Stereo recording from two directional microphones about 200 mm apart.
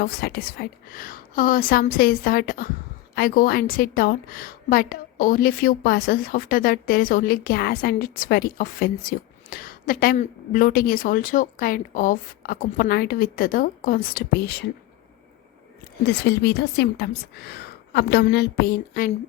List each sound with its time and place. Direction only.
0.0 s a woman's voice: 50° left (ahead or behind)
16.2 s a woman's voice: 55° left (ahead or behind)